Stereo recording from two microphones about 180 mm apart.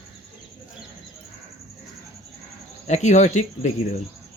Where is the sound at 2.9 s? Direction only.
40° left (ahead or behind).